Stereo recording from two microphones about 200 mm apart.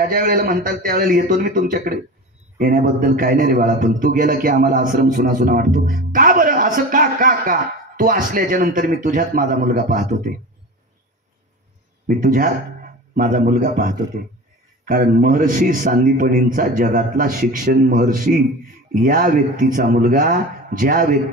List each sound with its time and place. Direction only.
0.1 s speech: 45° right (ahead or behind)
12.1 s speech: 45° right (ahead or behind)